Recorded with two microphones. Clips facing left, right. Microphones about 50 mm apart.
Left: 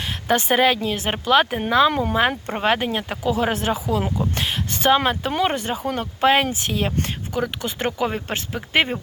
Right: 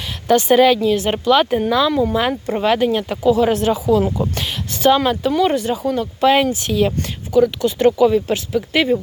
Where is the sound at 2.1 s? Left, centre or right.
Left.